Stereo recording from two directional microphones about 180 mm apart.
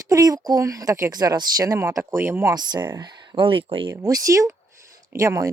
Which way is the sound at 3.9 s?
20° right (ahead or behind).